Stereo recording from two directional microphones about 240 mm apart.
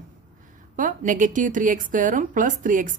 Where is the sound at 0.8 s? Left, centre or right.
Right.